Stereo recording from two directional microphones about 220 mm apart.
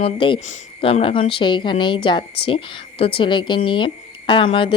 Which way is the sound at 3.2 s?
20° left (ahead or behind).